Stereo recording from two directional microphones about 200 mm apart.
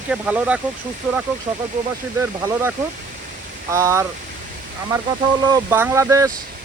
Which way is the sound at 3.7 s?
15° right (ahead or behind).